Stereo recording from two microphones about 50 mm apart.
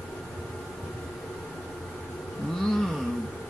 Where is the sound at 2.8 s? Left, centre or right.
Centre.